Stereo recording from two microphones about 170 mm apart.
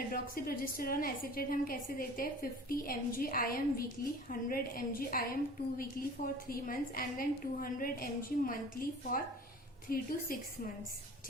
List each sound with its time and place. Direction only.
0.1 s a woman's voice: 60° left (ahead or behind)
6.5 s a woman's voice: 55° left (ahead or behind)